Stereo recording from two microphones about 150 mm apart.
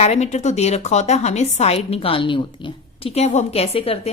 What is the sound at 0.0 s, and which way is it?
A woman's voice, 45° left (ahead or behind).